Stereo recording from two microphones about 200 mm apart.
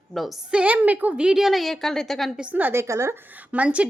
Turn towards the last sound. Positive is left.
turn(degrees=-5)  # may be behind; listen again after turning